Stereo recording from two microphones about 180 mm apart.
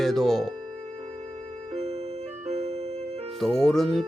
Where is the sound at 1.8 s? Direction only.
35° right (ahead or behind).